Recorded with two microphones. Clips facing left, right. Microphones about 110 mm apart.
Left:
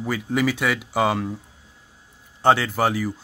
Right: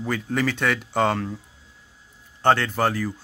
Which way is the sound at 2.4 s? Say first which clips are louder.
Left 1 dB; 10° left (ahead or behind).